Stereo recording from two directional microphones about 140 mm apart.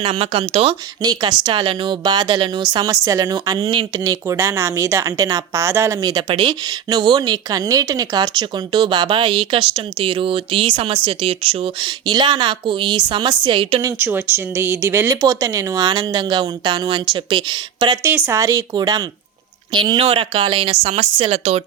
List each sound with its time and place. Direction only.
0.0 s speech: 40° right (ahead or behind)
1.0 s speech: 30° right (ahead or behind)
3.7 s speech: 40° right (ahead or behind)
4.0 s speech: 25° right (ahead or behind); by 13.8 s 40° right (ahead or behind)
13.8 s speech: 15° right (ahead or behind); by 21.6 s 45° right (ahead or behind)